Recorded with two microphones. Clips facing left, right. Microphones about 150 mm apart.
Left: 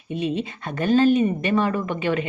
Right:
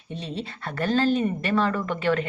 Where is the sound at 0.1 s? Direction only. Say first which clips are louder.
Left 8 dB; 15° left (ahead or behind).